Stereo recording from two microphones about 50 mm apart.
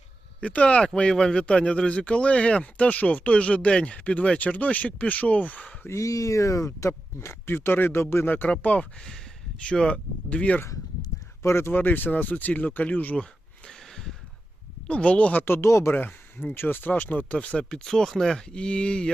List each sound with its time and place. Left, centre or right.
0.4 s speech: left
1.1 s speech: centre; by 5.6 s left
5.9 s speech: left
7.5 s speech: left
8.6 s speech: left
9.0 s a sound: centre
9.6 s speech: centre
11.4 s speech: left
11.7 s speech: left
13.7 s a sound: centre
14.8 s speech: left
15.4 s speech: left
15.9 s speech: left
17.3 s speech: left